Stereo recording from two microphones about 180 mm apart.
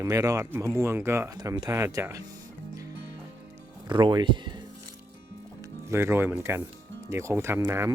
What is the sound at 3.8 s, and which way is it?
Speech, 25° right (ahead or behind).